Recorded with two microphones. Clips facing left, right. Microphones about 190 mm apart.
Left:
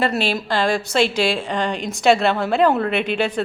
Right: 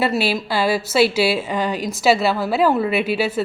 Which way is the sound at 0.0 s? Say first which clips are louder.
Right 1 dB; 5° right (ahead or behind).